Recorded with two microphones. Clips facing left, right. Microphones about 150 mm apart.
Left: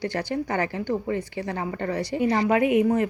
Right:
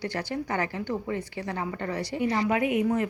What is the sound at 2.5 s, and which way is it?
Speech, 90° left.